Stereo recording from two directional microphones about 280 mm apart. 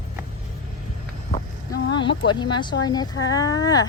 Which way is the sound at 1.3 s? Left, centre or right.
Centre.